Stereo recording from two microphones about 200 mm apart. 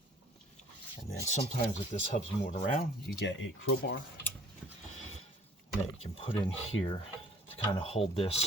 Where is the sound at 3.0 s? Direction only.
65° left (ahead or behind).